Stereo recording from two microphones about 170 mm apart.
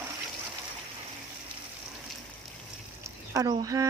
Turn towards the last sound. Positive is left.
turn(degrees=-20)  # may be behind; listen again after turning